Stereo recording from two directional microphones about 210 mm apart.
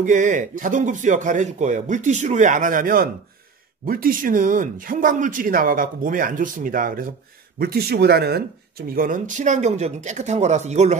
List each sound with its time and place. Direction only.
0.0 s speech: 35° right (ahead or behind)